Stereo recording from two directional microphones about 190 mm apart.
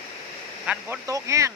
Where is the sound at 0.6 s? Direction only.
5° right (ahead or behind).